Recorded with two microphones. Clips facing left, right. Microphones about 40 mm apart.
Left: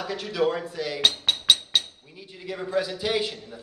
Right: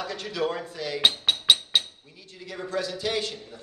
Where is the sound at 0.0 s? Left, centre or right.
Centre.